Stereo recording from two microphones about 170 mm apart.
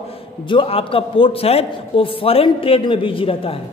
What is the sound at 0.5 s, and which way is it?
A man's voice, 30° left (ahead or behind).